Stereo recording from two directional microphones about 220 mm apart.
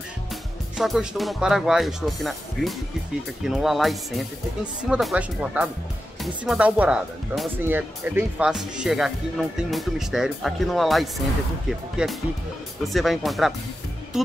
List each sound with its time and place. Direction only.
0.7 s speech: centre (ahead or behind)